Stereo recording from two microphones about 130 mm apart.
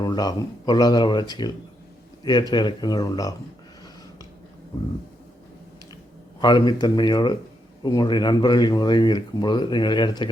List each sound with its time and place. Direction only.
0.0 s speech: 30° left (ahead or behind)
6.4 s speech: 35° left (ahead or behind)